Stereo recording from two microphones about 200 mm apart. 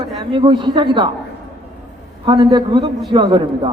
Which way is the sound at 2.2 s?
20° right (ahead or behind).